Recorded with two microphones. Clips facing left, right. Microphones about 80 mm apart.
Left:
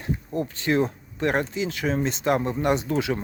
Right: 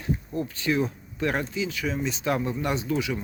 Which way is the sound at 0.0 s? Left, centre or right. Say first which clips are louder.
Left 1 dB; left.